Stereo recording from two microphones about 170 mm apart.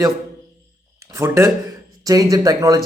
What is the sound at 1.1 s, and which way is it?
Speech, 15° right (ahead or behind).